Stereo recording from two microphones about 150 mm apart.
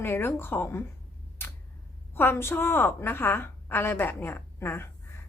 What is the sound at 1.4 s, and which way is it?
Tick-tock, 15° left (ahead or behind).